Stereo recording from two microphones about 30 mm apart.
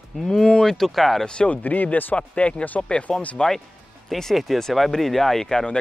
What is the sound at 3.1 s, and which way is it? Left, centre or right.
Speech, left.